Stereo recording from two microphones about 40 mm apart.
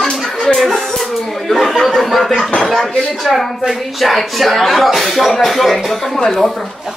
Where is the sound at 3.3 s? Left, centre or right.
Centre.